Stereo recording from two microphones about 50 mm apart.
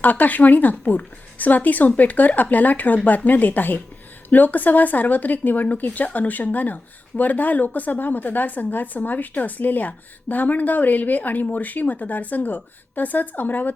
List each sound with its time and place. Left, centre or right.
0.0 s a woman's voice: left